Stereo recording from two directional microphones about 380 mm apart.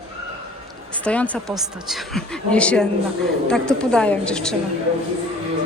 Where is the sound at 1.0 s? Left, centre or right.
Centre.